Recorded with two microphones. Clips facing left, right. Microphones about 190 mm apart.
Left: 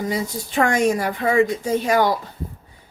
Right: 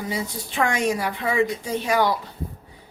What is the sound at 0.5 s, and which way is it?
A woman's voice, 45° left (ahead or behind).